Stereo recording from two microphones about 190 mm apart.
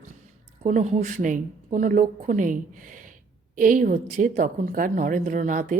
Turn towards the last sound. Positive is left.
turn(degrees=-40)  # may be behind; listen again after turning